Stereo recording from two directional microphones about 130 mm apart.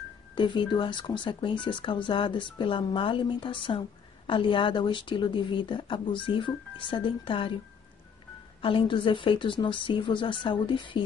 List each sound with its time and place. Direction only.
0.3 s speech: 40° left (ahead or behind)
8.5 s speech: 45° left (ahead or behind)